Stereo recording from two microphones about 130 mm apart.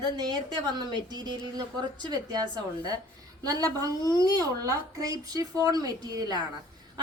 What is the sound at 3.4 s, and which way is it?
Speech, 30° right (ahead or behind).